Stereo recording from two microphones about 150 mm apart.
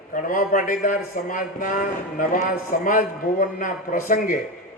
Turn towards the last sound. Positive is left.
turn(degrees=65)  # may be behind; listen again after turning